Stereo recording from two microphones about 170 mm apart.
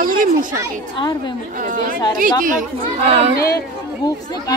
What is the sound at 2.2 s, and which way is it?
Speech, 55° right (ahead or behind).